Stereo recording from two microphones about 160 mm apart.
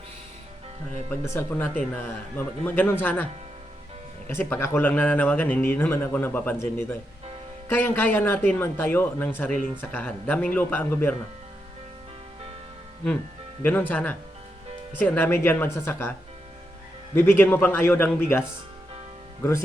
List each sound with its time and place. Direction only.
1.1 s speech: 15° left (ahead or behind)
4.3 s speech: 10° left (ahead or behind)
13.6 s speech: 10° left (ahead or behind)
17.2 s speech: 15° left (ahead or behind)
19.4 s speech: 15° left (ahead or behind)